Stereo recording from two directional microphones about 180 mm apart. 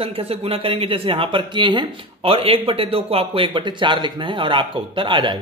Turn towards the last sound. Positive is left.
turn(degrees=-25)  # may be behind; listen again after turning